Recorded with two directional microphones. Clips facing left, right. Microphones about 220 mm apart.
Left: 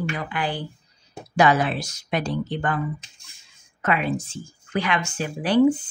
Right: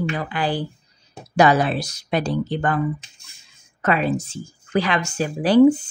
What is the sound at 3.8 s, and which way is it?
Speech, 35° right (ahead or behind).